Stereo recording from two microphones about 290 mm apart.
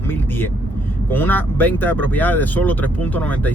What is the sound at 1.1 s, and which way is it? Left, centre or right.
Speech, centre.